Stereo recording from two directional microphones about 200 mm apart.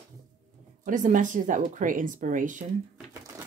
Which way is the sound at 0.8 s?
40° right (ahead or behind).